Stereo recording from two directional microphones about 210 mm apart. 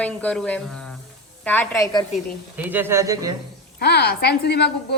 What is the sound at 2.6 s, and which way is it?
Speech, 10° right (ahead or behind).